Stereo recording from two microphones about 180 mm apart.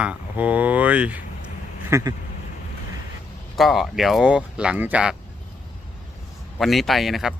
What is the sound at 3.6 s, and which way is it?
Speech, centre (ahead or behind).